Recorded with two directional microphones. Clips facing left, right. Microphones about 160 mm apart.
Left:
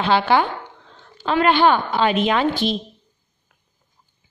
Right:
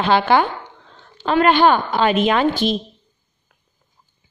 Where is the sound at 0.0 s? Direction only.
50° right (ahead or behind).